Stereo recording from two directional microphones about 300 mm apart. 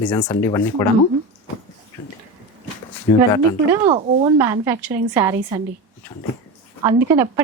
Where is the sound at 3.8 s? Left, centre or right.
Centre.